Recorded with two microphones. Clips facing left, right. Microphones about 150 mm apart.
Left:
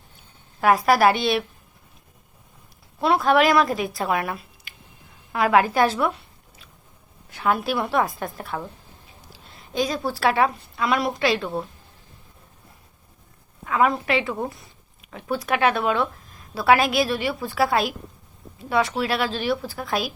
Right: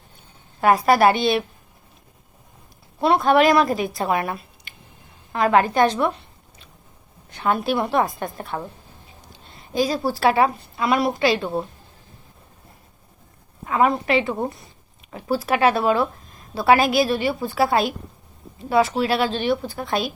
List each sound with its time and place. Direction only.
0.6 s a woman's voice: centre (ahead or behind)
3.0 s a woman's voice: centre (ahead or behind)
7.3 s a woman's voice: 5° left (ahead or behind)
11.3 s a woman's voice: 25° right (ahead or behind)
13.7 s a woman's voice: centre (ahead or behind)
15.0 s a sound: centre (ahead or behind)
15.4 s a woman's voice: centre (ahead or behind)